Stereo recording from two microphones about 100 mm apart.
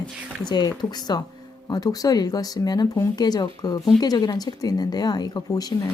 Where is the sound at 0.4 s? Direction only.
45° left (ahead or behind).